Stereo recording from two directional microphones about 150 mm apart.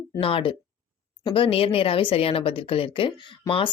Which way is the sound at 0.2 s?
35° left (ahead or behind).